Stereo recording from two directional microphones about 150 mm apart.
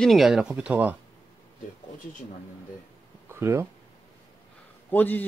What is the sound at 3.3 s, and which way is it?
Speech, 15° right (ahead or behind).